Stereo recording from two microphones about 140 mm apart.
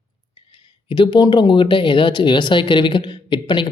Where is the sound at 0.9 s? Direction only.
35° left (ahead or behind).